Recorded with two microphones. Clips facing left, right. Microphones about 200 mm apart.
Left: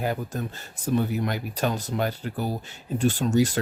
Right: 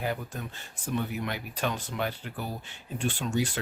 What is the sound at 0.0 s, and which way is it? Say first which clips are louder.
Speech: left 5 dB; 40° left (ahead or behind).